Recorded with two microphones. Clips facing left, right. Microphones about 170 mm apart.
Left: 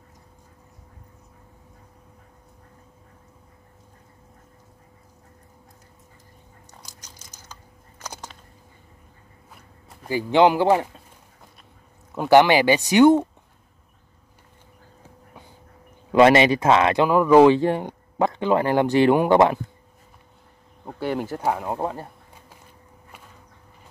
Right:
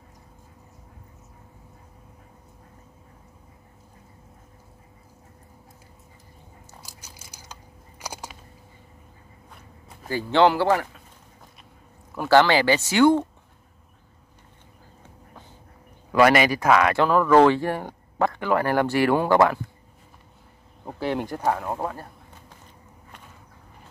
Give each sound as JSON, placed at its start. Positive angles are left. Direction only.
{"t": 6.7, "sound": "a sound", "side_deg": -5}
{"t": 10.0, "sound": "speech", "side_deg": 15}
{"t": 12.2, "sound": "speech", "side_deg": 20}
{"t": 16.1, "sound": "speech", "side_deg": 25}
{"t": 20.8, "sound": "speech", "side_deg": 0}